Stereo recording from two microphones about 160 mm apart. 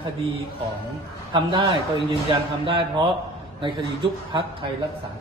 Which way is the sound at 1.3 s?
30° right (ahead or behind).